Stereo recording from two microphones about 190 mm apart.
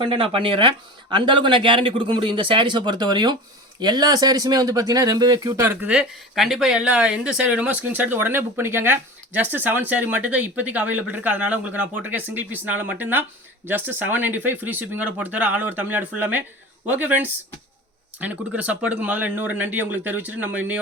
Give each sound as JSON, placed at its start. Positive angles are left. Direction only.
{"t": 0.0, "sound": "speech", "side_deg": -25}